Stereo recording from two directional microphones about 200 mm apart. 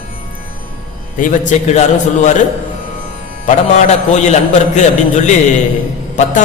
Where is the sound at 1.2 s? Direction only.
40° left (ahead or behind).